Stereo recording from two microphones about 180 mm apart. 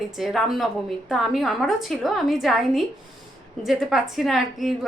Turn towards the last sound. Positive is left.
turn(degrees=0)  # may be behind; listen again after turning